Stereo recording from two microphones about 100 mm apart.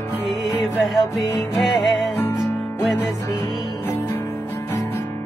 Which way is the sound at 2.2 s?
25° left (ahead or behind).